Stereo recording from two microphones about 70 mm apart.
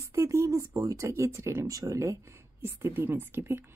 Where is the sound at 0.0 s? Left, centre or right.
Right.